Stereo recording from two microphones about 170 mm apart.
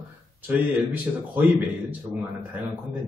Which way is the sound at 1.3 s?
10° right (ahead or behind).